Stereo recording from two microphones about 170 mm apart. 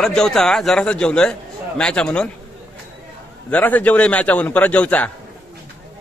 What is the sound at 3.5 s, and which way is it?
A man's voice, 10° left (ahead or behind).